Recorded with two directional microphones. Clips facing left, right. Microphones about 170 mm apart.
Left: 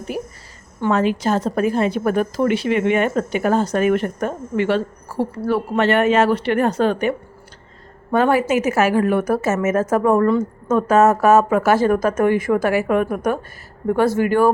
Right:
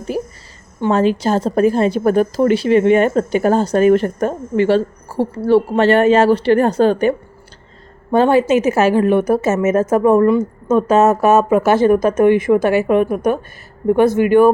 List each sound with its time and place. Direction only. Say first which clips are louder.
0.8 s a woman's voice: right 3 dB; 30° right (ahead or behind)